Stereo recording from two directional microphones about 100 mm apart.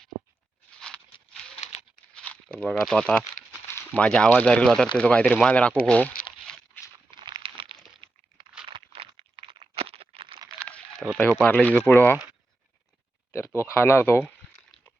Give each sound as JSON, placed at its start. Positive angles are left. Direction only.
{"t": 0.7, "sound": "patter", "side_deg": 10}
{"t": 2.1, "sound": "crumpling", "side_deg": 10}
{"t": 2.8, "sound": "speech", "side_deg": 5}
{"t": 3.7, "sound": "speech", "side_deg": 20}
{"t": 6.8, "sound": "a sound", "side_deg": 20}
{"t": 7.2, "sound": "a sound", "side_deg": -50}
{"t": 8.7, "sound": "a sound", "side_deg": -75}
{"t": 11.2, "sound": "speech", "side_deg": 10}
{"t": 13.3, "sound": "speech", "side_deg": 25}